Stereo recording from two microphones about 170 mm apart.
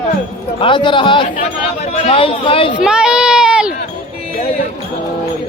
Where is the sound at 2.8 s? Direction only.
5° right (ahead or behind).